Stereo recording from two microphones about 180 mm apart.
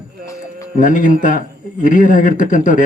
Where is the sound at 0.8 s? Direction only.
45° left (ahead or behind).